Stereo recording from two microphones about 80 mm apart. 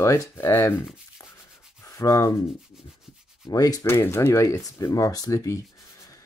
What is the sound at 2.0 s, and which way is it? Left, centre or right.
Speech, left.